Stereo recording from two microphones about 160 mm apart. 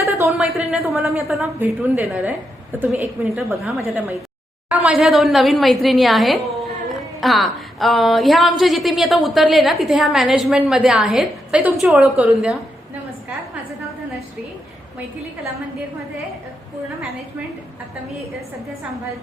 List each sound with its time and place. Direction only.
0.0 s a sound: 15° right (ahead or behind)
0.3 s a woman's voice: centre (ahead or behind)
1.5 s a woman's voice: 10° right (ahead or behind)
3.6 s a woman's voice: centre (ahead or behind)